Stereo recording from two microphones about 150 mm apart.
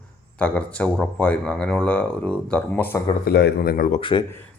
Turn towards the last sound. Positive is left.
turn(degrees=35)  # may be behind; listen again after turning